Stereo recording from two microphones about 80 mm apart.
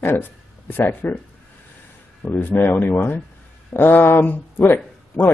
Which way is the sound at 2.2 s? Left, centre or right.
Left.